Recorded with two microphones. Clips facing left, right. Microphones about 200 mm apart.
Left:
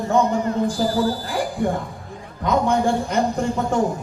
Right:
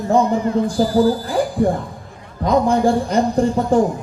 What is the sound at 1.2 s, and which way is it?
A man's voice, 35° right (ahead or behind).